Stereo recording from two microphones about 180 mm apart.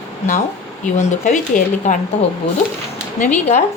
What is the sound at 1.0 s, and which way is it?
Speech, 40° left (ahead or behind).